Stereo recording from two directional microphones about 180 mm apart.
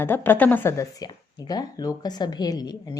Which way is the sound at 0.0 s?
10° left (ahead or behind).